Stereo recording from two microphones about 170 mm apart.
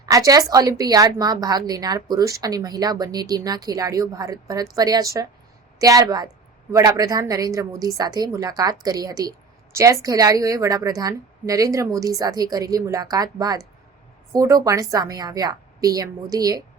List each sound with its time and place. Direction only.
0.0 s a woman's voice: 20° right (ahead or behind)